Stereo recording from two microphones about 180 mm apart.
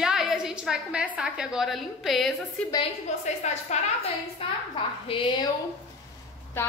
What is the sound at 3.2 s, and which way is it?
Speech, 40° left (ahead or behind).